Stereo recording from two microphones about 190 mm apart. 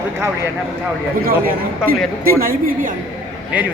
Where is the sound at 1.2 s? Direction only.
50° right (ahead or behind).